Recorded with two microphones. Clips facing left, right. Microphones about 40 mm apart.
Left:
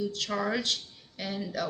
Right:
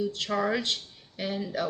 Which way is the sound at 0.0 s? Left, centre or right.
Centre.